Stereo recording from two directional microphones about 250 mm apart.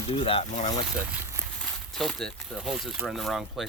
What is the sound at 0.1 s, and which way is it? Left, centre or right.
Speech, left.